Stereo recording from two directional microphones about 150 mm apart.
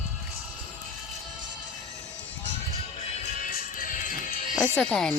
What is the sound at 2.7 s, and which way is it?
Music, 45° left (ahead or behind).